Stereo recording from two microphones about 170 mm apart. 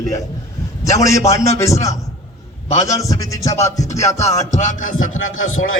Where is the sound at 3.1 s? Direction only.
20° left (ahead or behind).